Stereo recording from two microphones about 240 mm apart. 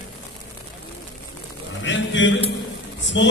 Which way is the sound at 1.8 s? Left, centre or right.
Left.